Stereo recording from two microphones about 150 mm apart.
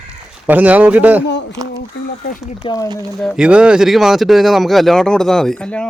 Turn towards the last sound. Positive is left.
turn(degrees=5)  # may be behind; listen again after turning